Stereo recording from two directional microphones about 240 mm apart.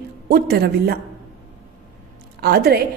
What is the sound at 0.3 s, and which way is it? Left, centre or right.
Speech, right.